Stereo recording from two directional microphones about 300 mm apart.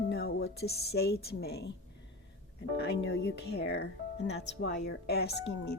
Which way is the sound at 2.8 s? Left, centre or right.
Left.